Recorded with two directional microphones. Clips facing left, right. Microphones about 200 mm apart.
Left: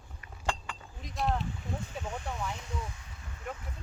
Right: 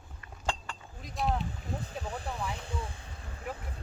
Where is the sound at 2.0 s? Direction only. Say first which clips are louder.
Even; 35° right (ahead or behind).